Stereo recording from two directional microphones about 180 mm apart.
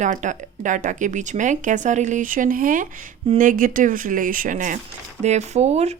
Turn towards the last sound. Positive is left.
turn(degrees=-35)  # may be behind; listen again after turning